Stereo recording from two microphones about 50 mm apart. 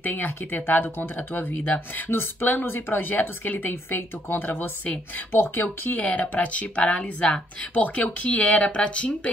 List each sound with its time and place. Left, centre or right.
0.0 s speech: left; by 7.4 s centre
7.7 s speech: left